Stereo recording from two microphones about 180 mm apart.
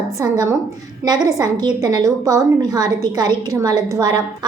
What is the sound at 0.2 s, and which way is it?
A woman's voice, 20° right (ahead or behind).